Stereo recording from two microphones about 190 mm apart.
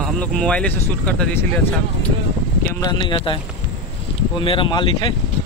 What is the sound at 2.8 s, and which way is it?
Speech, 25° left (ahead or behind).